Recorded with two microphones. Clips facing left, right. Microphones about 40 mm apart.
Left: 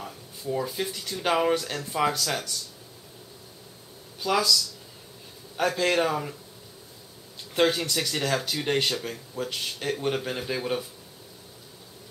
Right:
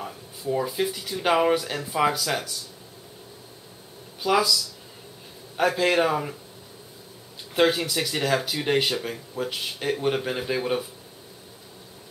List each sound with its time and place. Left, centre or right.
0.0 s speech: centre
4.2 s speech: centre
7.5 s speech: centre